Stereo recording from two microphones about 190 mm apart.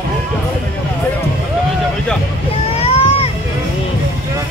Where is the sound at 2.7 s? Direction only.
30° left (ahead or behind).